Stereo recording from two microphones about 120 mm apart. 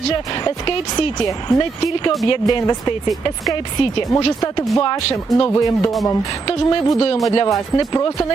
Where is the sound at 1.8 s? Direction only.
45° left (ahead or behind).